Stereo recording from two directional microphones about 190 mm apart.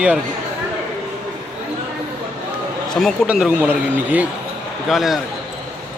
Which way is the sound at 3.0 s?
5° right (ahead or behind).